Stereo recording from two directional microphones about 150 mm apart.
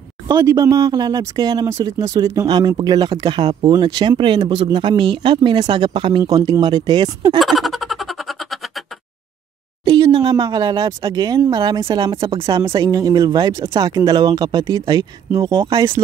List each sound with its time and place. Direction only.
0.3 s speech: 25° right (ahead or behind)
7.3 s a sound: centre (ahead or behind)
9.8 s speech: 35° right (ahead or behind)